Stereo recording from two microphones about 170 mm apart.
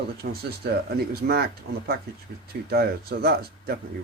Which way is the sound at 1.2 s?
65° right (ahead or behind).